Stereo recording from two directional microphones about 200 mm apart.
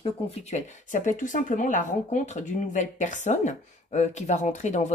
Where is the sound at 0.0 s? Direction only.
30° left (ahead or behind).